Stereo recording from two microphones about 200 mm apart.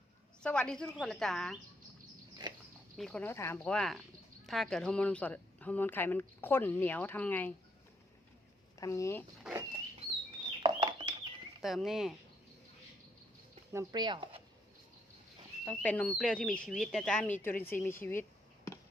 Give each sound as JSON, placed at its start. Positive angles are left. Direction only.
{"t": 0.4, "sound": "speech", "side_deg": 5}
{"t": 3.0, "sound": "a woman's voice", "side_deg": 5}
{"t": 8.8, "sound": "a woman's voice", "side_deg": 15}
{"t": 9.4, "sound": "a sound", "side_deg": -10}
{"t": 10.6, "sound": "a sound", "side_deg": -25}
{"t": 11.6, "sound": "speech", "side_deg": 0}
{"t": 13.7, "sound": "speech", "side_deg": -20}
{"t": 15.6, "sound": "speech", "side_deg": 10}